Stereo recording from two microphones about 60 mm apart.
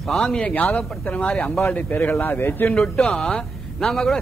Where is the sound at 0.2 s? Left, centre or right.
Centre.